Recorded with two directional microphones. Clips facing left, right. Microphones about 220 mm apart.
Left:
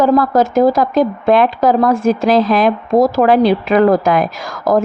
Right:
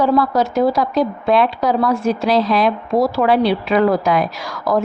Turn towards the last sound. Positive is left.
turn(degrees=50)  # may be behind; listen again after turning